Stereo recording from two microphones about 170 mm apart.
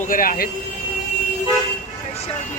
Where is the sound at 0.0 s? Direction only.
55° left (ahead or behind).